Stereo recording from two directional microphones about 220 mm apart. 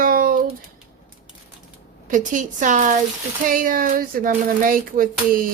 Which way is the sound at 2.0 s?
35° right (ahead or behind).